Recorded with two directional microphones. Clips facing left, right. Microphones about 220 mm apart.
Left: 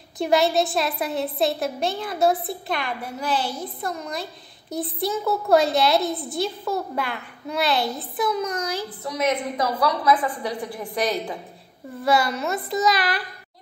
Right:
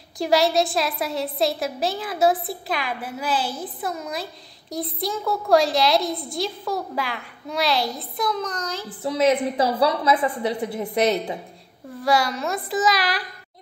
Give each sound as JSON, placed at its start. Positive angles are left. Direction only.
{"t": 0.2, "sound": "a woman's voice", "side_deg": 0}
{"t": 9.0, "sound": "a woman's voice", "side_deg": -30}
{"t": 12.0, "sound": "a woman's voice", "side_deg": 0}